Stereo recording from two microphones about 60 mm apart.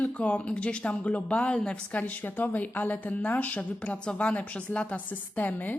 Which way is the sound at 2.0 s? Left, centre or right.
Left.